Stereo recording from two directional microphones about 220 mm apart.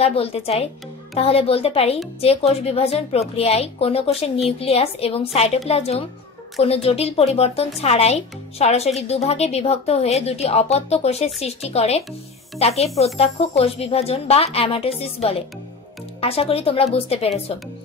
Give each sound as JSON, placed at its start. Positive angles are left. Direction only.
{"t": 0.0, "sound": "speech", "side_deg": 25}